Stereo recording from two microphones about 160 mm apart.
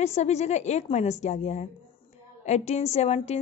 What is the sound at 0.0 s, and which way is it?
A woman's voice, 45° left (ahead or behind).